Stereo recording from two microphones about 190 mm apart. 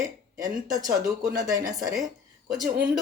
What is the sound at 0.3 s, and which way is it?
Speech, 20° right (ahead or behind).